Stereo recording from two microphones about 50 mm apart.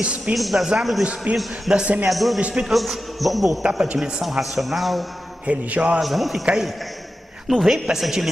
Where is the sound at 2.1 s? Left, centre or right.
Centre.